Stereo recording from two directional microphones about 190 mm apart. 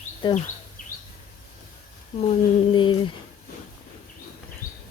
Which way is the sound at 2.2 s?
30° left (ahead or behind).